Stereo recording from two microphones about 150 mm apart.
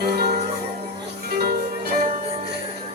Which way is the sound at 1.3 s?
90° right.